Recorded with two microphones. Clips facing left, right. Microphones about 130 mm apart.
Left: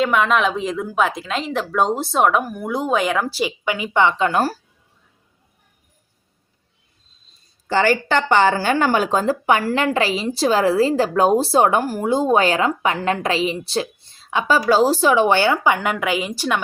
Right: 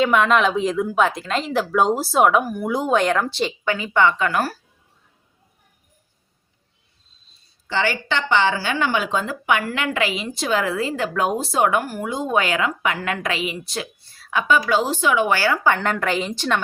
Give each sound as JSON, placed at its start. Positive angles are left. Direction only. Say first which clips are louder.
{"t": 0.0, "sound": "speech", "louder": "right 1 dB", "side_deg": 0}
{"t": 7.7, "sound": "speech", "louder": "left 5 dB", "side_deg": 45}
{"t": 14.4, "sound": "a woman's voice", "louder": "left 4 dB", "side_deg": 35}